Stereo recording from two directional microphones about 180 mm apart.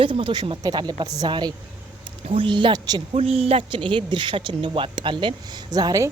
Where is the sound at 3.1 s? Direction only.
35° right (ahead or behind).